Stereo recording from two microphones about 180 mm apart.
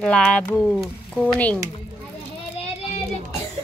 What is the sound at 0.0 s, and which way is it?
Speech, 5° left (ahead or behind).